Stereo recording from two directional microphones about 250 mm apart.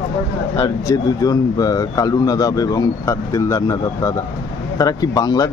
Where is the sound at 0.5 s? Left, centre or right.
Centre.